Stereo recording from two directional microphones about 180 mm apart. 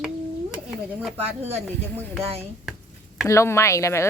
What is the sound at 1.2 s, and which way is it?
Speech, 35° right (ahead or behind).